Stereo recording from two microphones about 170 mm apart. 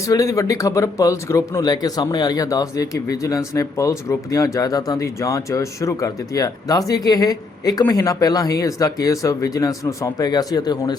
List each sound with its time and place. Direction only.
0.0 s speech: 20° left (ahead or behind)